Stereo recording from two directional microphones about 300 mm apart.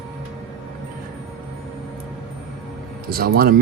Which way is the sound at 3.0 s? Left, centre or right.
Right.